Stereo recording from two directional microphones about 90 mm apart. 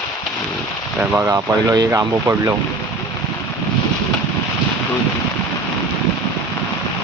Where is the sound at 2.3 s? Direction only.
35° right (ahead or behind).